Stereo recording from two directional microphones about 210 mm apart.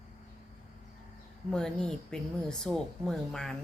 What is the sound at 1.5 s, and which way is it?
A woman's voice, 5° left (ahead or behind).